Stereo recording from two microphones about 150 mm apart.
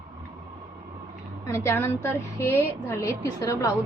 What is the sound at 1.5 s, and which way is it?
A woman's voice, 20° left (ahead or behind).